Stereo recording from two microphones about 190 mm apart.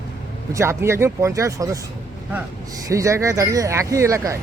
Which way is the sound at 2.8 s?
15° right (ahead or behind).